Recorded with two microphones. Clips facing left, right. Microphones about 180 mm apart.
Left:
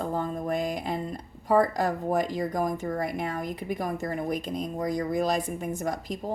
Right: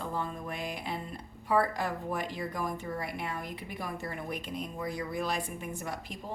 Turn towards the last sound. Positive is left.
turn(degrees=40)  # may be behind; listen again after turning